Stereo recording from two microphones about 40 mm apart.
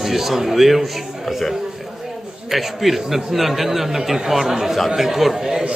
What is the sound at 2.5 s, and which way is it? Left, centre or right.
A man's voice, centre.